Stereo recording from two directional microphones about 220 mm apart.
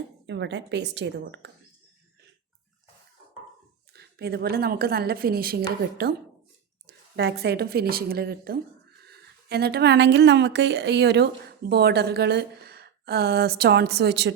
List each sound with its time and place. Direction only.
0.3 s speech: 55° right (ahead or behind)
3.9 s speech: 45° right (ahead or behind)